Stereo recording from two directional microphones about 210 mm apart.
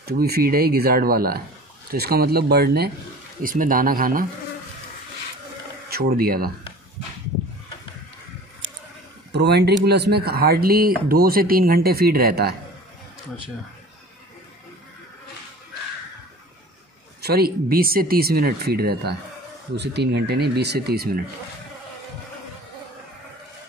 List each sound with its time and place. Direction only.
0.0 s speech: 50° right (ahead or behind)
5.9 s speech: 45° right (ahead or behind)
9.3 s speech: 50° right (ahead or behind)
17.2 s speech: 50° right (ahead or behind)